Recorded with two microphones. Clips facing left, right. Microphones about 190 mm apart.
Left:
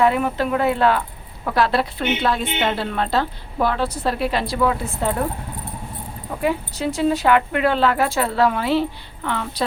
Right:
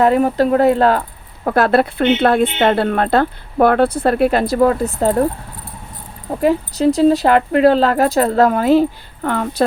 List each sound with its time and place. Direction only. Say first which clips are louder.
0.0 s a woman's voice: right 5 dB; 40° right (ahead or behind)
6.4 s speech: right 8 dB; 40° right (ahead or behind)